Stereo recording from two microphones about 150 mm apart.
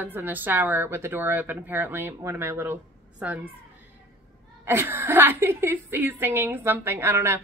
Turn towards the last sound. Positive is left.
turn(degrees=-15)  # may be behind; listen again after turning